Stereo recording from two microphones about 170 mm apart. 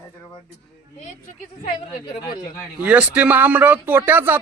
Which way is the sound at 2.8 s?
10° right (ahead or behind).